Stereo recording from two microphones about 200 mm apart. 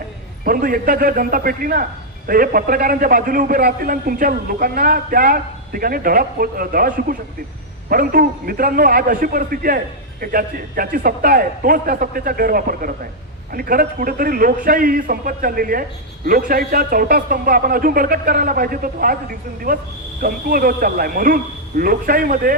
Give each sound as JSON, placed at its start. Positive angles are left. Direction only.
{"t": 0.4, "sound": "a man's voice", "side_deg": -45}